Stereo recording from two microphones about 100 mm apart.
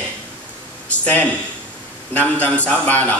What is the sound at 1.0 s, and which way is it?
A man's voice, 15° left (ahead or behind).